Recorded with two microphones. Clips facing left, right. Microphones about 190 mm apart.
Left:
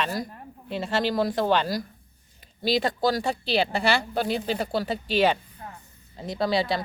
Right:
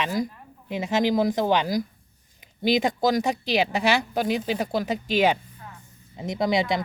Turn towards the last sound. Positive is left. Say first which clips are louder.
# right 1 dB
turn(degrees=-20)  # may be behind; listen again after turning